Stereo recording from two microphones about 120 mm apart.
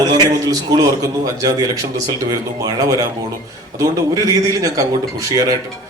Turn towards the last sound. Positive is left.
turn(degrees=-30)  # may be behind; listen again after turning